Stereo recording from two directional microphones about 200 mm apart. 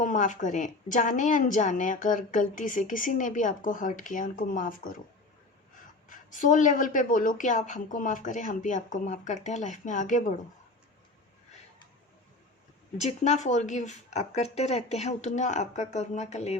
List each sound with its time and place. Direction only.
0.0 s a woman's voice: 40° left (ahead or behind)
6.1 s a woman's voice: 40° left (ahead or behind)
13.0 s a woman's voice: 35° left (ahead or behind)